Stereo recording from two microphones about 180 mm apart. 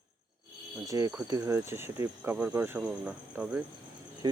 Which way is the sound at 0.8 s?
15° right (ahead or behind).